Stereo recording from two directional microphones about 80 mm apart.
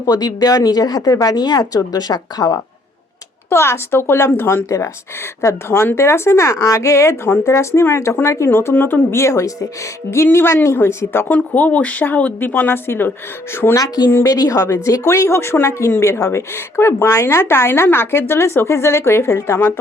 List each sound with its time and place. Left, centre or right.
0.0 s speech: left
3.5 s speech: left
11.3 s speech: centre
13.7 s speech: left